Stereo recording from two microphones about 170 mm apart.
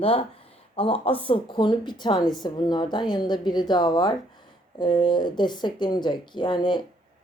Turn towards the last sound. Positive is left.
turn(degrees=25)  # may be behind; listen again after turning